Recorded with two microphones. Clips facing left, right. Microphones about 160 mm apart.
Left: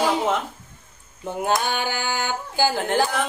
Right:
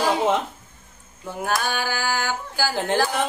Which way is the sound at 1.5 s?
20° left (ahead or behind).